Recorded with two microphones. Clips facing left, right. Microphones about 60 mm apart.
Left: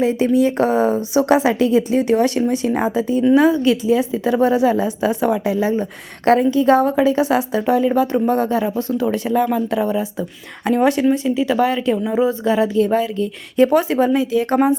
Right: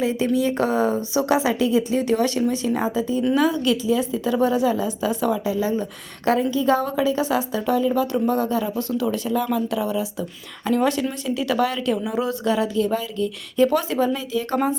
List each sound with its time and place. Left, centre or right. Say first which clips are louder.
0.0 s a woman's voice: left 5 dB; left
8.7 s speech: left 4 dB; left
9.0 s a woman's voice: left 6 dB; left
10.7 s speech: left 4 dB; left
11.1 s speech: left 6 dB; centre
12.7 s a woman's voice: left 6 dB; left